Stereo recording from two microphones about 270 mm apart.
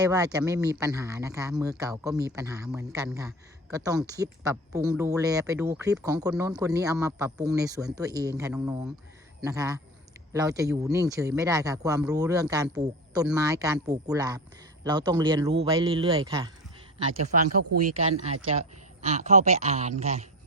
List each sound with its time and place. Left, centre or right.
0.0 s a man's voice: centre
17.7 s a man's voice: right
19.0 s a man's voice: right